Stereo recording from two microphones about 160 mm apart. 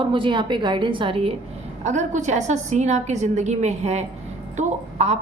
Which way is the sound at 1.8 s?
50° right (ahead or behind).